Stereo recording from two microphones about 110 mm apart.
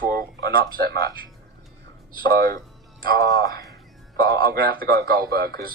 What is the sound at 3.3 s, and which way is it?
Speech, 30° left (ahead or behind).